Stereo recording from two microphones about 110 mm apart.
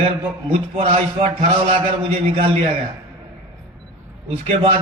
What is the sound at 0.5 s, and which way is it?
A man's voice, 70° right (ahead or behind).